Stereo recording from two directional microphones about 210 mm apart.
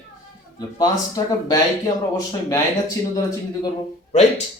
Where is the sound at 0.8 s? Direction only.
20° left (ahead or behind).